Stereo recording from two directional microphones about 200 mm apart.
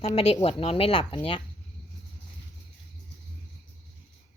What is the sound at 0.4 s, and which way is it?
Speech, 30° left (ahead or behind).